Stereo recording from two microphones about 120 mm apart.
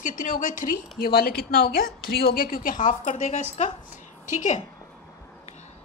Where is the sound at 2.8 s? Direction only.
90° left.